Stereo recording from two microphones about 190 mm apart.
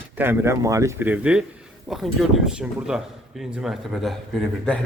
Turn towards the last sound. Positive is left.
turn(degrees=5)  # may be behind; listen again after turning